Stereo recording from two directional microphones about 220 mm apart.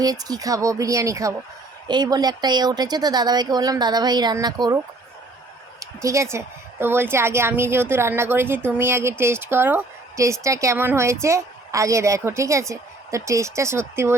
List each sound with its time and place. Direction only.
0.0 s a woman's voice: 15° right (ahead or behind)
5.8 s a woman's voice: 15° right (ahead or behind)